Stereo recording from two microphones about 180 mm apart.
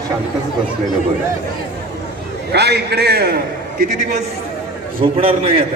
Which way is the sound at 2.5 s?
70° right (ahead or behind).